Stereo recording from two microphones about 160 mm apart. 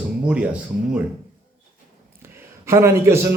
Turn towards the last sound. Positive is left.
turn(degrees=-15)  # may be behind; listen again after turning